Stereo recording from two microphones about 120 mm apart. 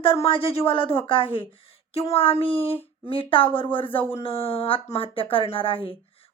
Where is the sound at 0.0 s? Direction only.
50° left (ahead or behind).